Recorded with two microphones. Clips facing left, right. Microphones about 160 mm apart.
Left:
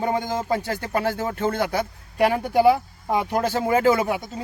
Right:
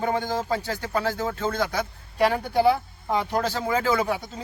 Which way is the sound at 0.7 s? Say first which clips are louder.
Left 2 dB; 55° left (ahead or behind).